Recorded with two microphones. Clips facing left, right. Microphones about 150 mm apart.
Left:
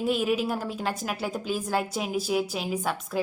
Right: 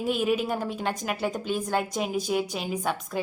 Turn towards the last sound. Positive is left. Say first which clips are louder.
# left 1 dB
turn(degrees=0)  # may be behind; listen again after turning